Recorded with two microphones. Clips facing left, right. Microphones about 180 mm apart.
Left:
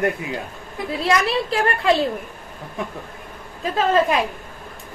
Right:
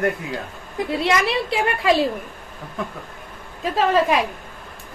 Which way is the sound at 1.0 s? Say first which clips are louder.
Left 3 dB; centre (ahead or behind).